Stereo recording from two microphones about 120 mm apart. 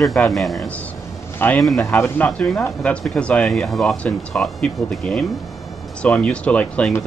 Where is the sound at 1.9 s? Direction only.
15° left (ahead or behind).